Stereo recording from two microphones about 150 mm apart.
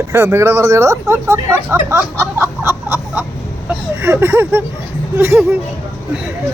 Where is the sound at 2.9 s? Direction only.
15° right (ahead or behind).